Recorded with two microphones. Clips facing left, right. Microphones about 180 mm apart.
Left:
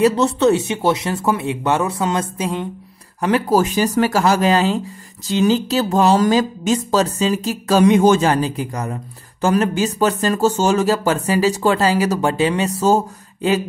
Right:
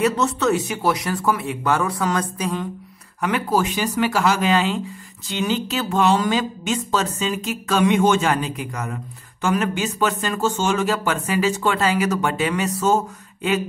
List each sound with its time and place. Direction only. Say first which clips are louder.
0.0 s speech: left 5 dB; 30° left (ahead or behind)
3.2 s speech: left 5 dB; 35° left (ahead or behind)